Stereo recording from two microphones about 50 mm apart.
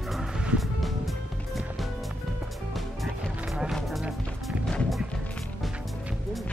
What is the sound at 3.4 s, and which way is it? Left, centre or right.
Music, centre.